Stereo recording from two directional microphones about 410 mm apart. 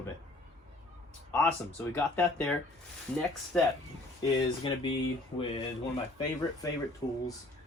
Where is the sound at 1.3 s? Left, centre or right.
Centre.